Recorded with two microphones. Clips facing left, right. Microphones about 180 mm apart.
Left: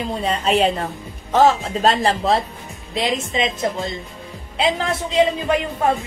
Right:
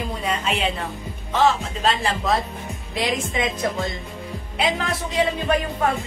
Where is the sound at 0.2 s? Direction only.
35° left (ahead or behind).